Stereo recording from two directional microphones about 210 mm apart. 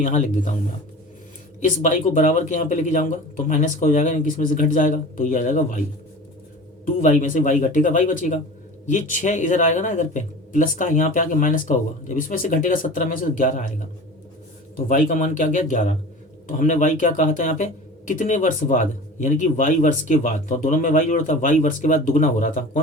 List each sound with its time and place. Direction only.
0.0 s speech: 35° left (ahead or behind)
1.8 s speech: 35° left (ahead or behind)
6.8 s speech: 35° left (ahead or behind)
14.8 s speech: 40° left (ahead or behind)